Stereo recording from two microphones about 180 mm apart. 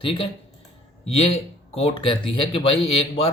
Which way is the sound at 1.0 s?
35° left (ahead or behind).